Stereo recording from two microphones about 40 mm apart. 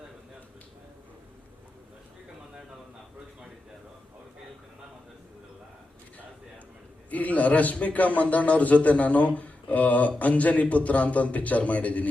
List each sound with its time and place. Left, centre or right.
7.1 s a man's voice: left